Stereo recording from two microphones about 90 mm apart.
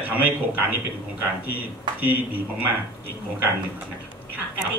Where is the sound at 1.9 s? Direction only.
55° right (ahead or behind).